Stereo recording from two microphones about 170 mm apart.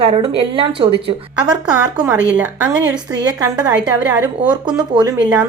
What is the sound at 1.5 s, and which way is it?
Speech, 5° right (ahead or behind).